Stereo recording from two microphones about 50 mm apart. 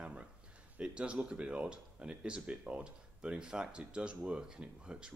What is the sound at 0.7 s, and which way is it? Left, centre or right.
Speech, centre.